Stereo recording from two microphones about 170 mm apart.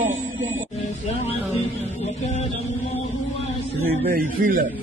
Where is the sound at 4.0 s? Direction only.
55° right (ahead or behind).